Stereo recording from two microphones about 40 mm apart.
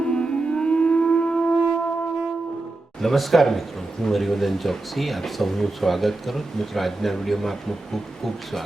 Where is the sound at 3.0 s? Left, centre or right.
Centre.